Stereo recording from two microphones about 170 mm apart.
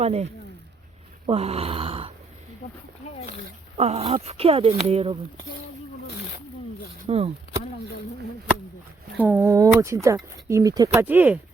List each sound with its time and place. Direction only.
0.0 s speech: 40° right (ahead or behind)
1.3 s a sound: 35° right (ahead or behind)
3.8 s speech: 35° right (ahead or behind)
7.1 s speech: 35° right (ahead or behind)
9.1 s speech: 10° right (ahead or behind)